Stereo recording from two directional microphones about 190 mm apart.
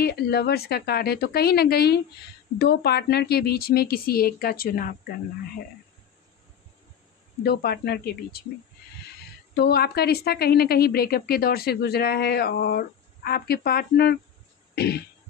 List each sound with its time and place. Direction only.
0.0 s a woman's voice: 60° left (ahead or behind)
7.4 s a woman's voice: 55° left (ahead or behind)
9.5 s a woman's voice: 55° left (ahead or behind)